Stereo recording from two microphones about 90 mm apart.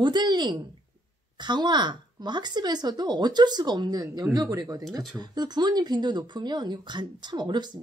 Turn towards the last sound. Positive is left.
turn(degrees=-55)  # may be behind; listen again after turning